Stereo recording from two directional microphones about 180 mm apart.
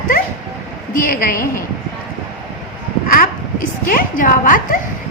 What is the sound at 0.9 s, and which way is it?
Speech, 50° left (ahead or behind).